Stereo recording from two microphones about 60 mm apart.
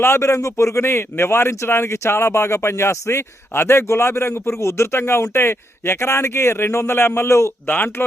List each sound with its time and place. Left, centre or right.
0.0 s speech: left
7.7 s speech: left